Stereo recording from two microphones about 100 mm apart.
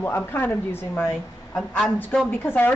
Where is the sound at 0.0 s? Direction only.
20° left (ahead or behind).